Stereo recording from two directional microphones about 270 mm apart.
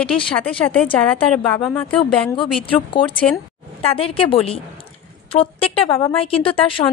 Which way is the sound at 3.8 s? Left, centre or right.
Left.